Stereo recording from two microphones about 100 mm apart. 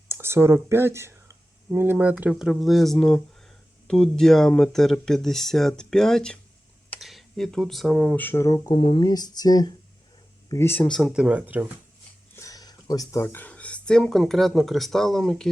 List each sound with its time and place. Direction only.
0.1 s speech: 25° right (ahead or behind); by 8.4 s 20° left (ahead or behind)
8.4 s speech: 35° left (ahead or behind)
8.7 s speech: 55° left (ahead or behind)
9.0 s speech: 40° left (ahead or behind)
10.5 s speech: 25° left (ahead or behind)
10.8 s speech: 5° left (ahead or behind)
11.1 s speech: 10° right (ahead or behind)
12.4 s speech: 35° left (ahead or behind); by 15.4 s 5° left (ahead or behind)